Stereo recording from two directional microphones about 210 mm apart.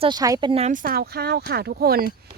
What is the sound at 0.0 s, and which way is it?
Speech, 20° right (ahead or behind).